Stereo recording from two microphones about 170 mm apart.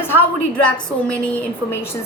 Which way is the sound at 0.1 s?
10° left (ahead or behind).